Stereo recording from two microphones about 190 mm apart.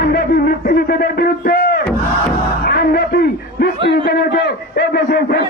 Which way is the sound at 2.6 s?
55° left (ahead or behind).